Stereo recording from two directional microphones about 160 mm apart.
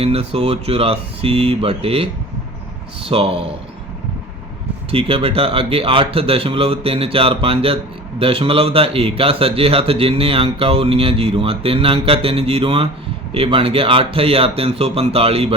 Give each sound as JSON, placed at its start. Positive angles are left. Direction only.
{"t": 0.0, "sound": "speech", "side_deg": -40}
{"t": 4.9, "sound": "speech", "side_deg": -35}